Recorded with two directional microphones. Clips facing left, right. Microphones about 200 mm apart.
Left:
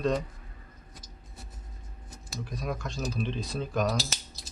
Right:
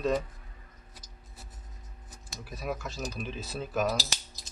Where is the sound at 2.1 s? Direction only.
5° right (ahead or behind).